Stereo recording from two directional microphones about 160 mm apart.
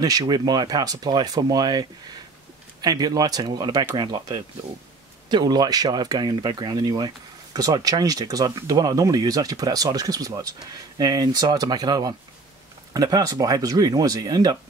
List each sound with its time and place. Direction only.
0.0 s speech: 20° right (ahead or behind)